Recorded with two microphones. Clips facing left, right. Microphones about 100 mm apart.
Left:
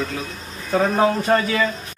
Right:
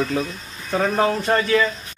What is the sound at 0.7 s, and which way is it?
Speech, 10° left (ahead or behind).